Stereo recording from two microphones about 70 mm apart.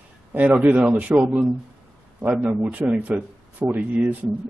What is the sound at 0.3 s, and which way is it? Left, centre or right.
Speech, right.